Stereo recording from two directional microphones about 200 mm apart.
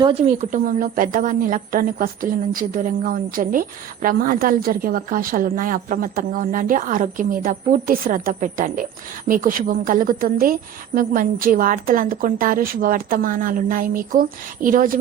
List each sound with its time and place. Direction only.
0.0 s a woman's voice: 30° right (ahead or behind)